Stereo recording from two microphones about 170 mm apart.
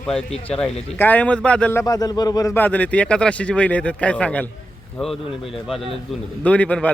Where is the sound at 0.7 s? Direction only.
35° left (ahead or behind).